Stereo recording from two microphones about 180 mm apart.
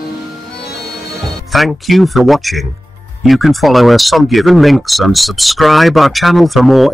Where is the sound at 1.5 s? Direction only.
Centre (ahead or behind).